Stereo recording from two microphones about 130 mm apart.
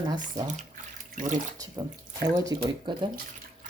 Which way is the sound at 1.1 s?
75° right (ahead or behind).